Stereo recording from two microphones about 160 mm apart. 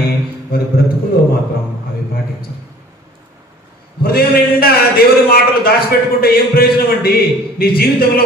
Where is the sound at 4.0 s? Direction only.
70° left (ahead or behind).